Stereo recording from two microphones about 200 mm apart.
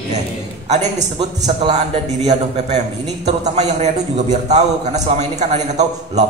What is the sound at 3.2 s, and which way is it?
A man's voice, 35° right (ahead or behind).